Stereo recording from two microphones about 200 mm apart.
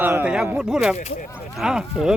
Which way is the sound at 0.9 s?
35° left (ahead or behind).